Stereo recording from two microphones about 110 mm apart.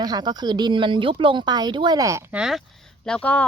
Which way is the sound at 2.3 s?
5° right (ahead or behind).